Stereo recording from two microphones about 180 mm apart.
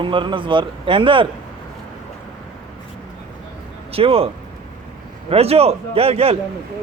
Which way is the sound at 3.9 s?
30° right (ahead or behind).